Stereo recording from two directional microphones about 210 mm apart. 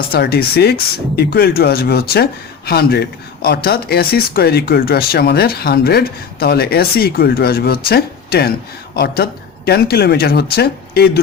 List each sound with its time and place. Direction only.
0.1 s speech: 50° left (ahead or behind)